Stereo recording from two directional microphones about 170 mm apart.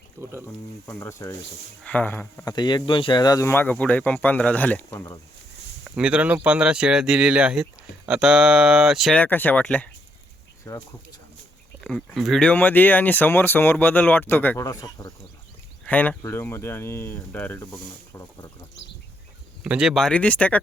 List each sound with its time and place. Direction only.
0.2 s speech: 15° right (ahead or behind)
0.9 s speech: 15° left (ahead or behind)
5.8 s speech: 5° right (ahead or behind)
10.7 s speech: 20° left (ahead or behind)
11.8 s speech: 5° left (ahead or behind); by 15.1 s 20° left (ahead or behind)
15.9 s speech: 10° left (ahead or behind)
19.6 s speech: 5° right (ahead or behind)